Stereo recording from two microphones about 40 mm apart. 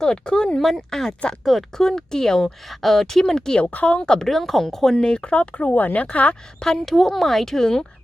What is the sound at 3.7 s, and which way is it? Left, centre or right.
Speech, left.